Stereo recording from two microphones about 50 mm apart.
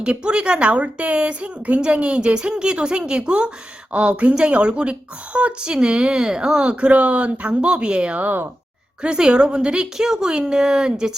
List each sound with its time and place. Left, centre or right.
0.0 s speech: centre; by 8.4 s right
9.0 s a woman's voice: centre